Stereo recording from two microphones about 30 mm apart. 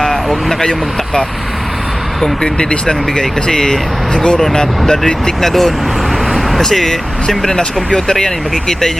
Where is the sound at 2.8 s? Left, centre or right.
Centre.